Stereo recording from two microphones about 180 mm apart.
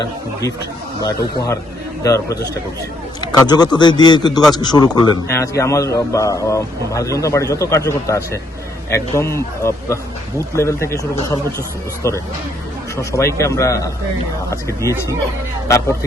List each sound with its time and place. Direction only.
1.0 s a man's voice: 20° left (ahead or behind)